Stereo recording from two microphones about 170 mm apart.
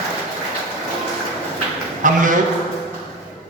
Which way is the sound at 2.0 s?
50° right (ahead or behind).